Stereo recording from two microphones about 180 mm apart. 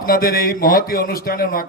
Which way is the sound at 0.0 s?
55° left (ahead or behind).